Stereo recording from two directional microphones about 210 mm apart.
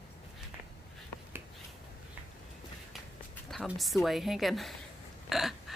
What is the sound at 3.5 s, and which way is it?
A woman's voice, centre (ahead or behind).